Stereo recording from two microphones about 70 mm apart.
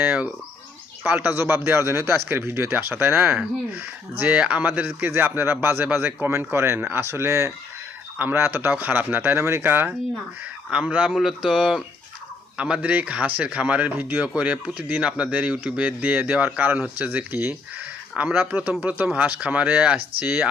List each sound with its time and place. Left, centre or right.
0.0 s speech: right
10.7 s a man's voice: centre
12.5 s speech: centre